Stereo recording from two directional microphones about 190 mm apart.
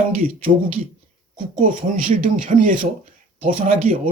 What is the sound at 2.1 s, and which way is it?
Speech, 40° right (ahead or behind).